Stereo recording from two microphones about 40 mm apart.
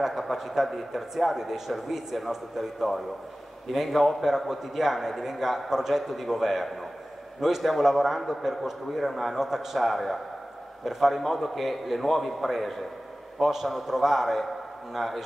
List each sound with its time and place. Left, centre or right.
0.0 s a man's voice: centre